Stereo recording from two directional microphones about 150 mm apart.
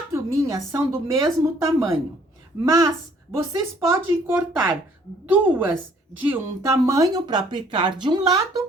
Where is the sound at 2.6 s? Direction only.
20° right (ahead or behind).